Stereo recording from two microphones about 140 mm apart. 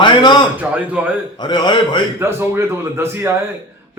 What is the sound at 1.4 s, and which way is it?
Speech, 30° left (ahead or behind).